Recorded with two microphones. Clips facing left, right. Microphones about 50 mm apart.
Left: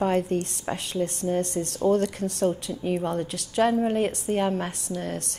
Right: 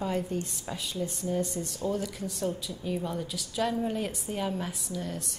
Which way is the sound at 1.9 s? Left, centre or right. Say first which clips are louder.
Left 9 dB; left.